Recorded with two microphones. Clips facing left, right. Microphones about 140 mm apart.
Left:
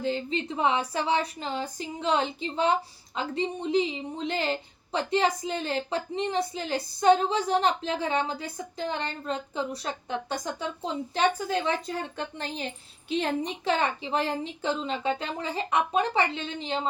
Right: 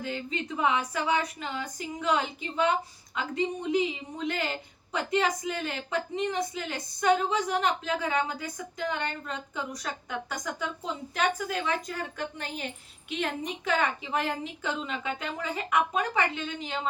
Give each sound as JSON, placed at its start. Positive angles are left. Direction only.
{"t": 0.0, "sound": "a woman's voice", "side_deg": 30}